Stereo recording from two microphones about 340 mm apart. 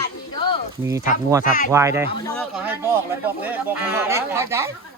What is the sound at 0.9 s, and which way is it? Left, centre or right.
Speech, centre.